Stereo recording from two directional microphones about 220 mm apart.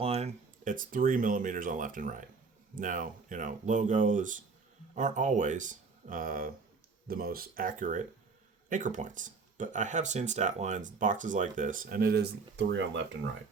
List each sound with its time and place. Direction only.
0.0 s speech: 30° right (ahead or behind); by 13.0 s 55° right (ahead or behind)